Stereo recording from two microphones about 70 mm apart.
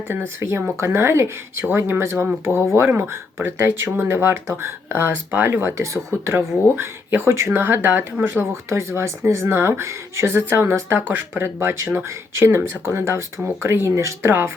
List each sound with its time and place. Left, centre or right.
0.1 s speech: right
11.9 s speech: right